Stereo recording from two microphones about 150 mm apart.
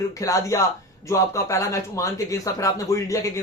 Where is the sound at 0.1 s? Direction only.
20° left (ahead or behind).